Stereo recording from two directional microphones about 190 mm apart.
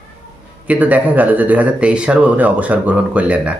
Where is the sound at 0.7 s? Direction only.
10° right (ahead or behind).